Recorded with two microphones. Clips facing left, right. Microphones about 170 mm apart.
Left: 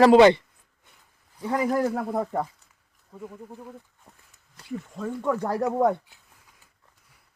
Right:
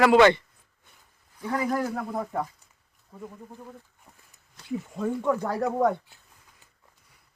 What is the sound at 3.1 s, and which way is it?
Speech, 5° left (ahead or behind).